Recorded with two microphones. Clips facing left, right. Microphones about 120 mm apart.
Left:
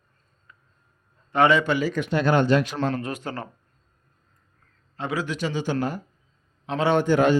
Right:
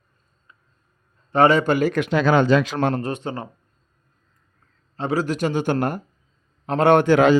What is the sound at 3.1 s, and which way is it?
Speech, 20° right (ahead or behind).